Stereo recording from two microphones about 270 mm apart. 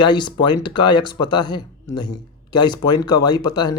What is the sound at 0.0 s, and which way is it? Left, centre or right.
Speech, centre.